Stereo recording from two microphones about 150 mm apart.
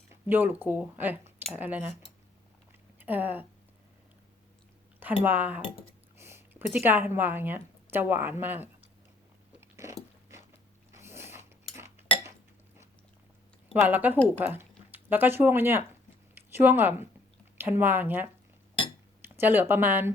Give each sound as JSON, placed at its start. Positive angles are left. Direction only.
{"t": 0.1, "sound": "speech", "side_deg": -15}
{"t": 3.0, "sound": "speech", "side_deg": -10}
{"t": 5.2, "sound": "a woman's voice", "side_deg": -10}
{"t": 9.6, "sound": "a sound", "side_deg": -20}
{"t": 10.9, "sound": "snort", "side_deg": -15}
{"t": 13.7, "sound": "speech", "side_deg": -10}